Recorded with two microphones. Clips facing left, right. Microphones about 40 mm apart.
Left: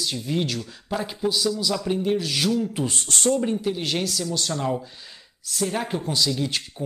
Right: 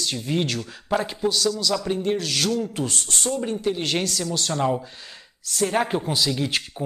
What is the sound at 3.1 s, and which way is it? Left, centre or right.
Speech, left.